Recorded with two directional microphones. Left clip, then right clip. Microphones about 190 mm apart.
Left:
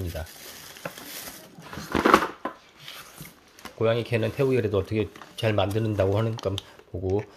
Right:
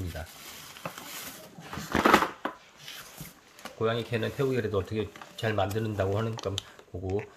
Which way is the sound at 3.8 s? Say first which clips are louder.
Left 5 dB; 35° left (ahead or behind).